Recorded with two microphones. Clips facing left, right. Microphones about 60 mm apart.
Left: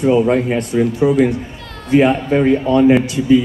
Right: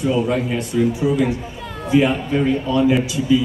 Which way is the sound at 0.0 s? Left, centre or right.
Left.